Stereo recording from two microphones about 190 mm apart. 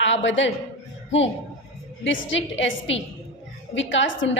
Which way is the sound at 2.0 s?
80° left.